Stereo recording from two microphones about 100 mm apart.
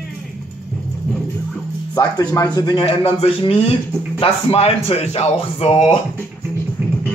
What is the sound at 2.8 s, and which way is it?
Speech, 75° left (ahead or behind).